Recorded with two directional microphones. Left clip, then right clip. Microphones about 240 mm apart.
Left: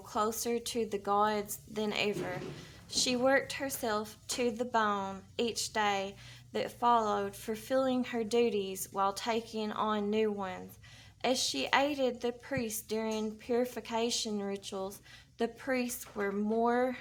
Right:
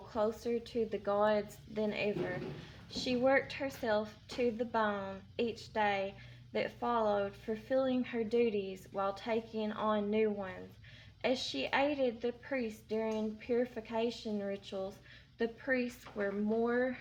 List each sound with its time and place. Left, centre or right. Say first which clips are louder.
0.1 s speech: left 2 dB; left